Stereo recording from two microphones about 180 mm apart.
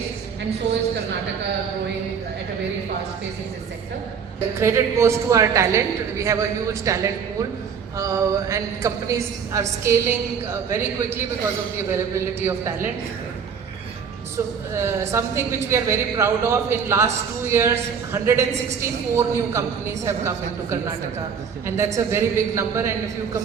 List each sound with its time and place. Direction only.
4.6 s a woman's voice: 15° right (ahead or behind)
14.7 s a woman's voice: 15° right (ahead or behind)